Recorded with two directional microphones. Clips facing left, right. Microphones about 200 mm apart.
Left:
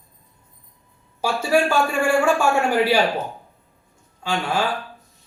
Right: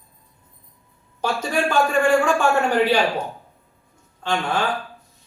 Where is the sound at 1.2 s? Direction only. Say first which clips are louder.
Left 3 dB; 10° left (ahead or behind).